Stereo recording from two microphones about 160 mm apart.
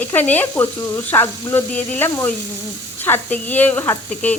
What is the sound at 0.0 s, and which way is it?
A woman's voice, 10° left (ahead or behind).